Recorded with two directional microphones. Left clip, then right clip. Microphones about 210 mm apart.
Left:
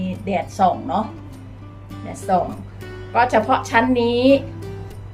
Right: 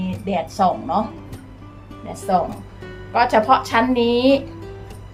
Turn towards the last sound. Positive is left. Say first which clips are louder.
# left 1 dB
turn(degrees=0)  # may be behind; listen again after turning